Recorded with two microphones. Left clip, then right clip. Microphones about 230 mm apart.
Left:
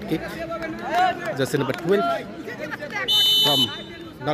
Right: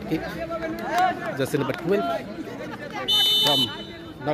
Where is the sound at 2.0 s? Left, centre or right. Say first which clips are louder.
Left 3 dB; left.